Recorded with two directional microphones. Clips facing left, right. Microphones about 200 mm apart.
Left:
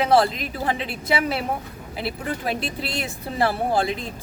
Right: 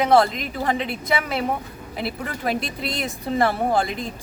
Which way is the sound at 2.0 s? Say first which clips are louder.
Even; centre (ahead or behind).